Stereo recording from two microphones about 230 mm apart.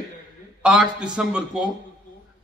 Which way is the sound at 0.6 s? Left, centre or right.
Centre.